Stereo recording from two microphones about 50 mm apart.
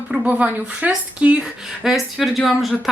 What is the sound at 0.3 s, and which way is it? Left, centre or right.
Speech, right.